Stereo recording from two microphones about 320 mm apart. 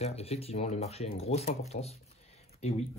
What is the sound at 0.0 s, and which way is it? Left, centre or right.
Speech, centre.